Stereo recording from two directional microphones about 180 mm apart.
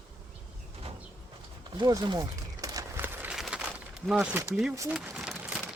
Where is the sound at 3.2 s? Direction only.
5° right (ahead or behind).